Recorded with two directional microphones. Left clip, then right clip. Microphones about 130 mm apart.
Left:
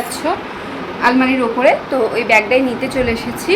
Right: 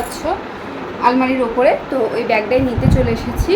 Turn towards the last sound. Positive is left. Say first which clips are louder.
# left 1 dB
turn(degrees=0)  # may be behind; listen again after turning